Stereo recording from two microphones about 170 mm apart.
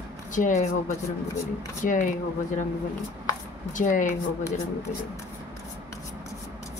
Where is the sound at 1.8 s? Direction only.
50° left (ahead or behind).